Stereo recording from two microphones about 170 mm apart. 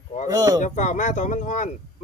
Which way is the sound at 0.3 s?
20° right (ahead or behind).